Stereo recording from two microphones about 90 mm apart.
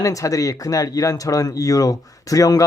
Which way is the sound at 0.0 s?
40° left (ahead or behind).